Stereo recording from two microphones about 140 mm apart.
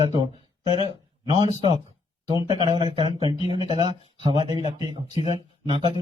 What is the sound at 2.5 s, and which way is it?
Speech, 30° right (ahead or behind).